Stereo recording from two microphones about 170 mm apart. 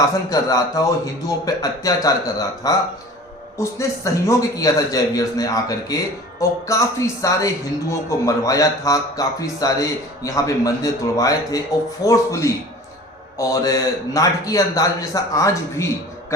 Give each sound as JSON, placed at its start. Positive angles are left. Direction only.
{"t": 0.0, "sound": "a man's voice", "side_deg": 20}